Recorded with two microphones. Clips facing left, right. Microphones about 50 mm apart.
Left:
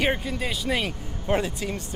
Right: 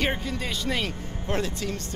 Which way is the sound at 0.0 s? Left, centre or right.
Centre.